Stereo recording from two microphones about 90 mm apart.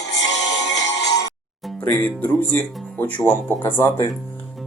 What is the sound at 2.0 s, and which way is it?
Speech, 15° left (ahead or behind).